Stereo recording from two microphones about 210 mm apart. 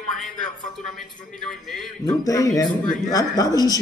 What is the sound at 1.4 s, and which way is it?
Speech, centre (ahead or behind).